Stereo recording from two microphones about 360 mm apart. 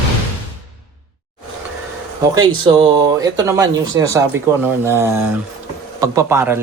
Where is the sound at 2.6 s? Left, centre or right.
Centre.